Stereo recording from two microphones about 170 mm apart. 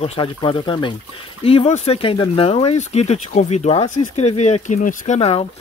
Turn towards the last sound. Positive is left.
turn(degrees=35)  # may be behind; listen again after turning